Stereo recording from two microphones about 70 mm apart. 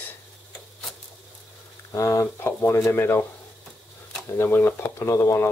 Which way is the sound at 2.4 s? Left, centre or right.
Left.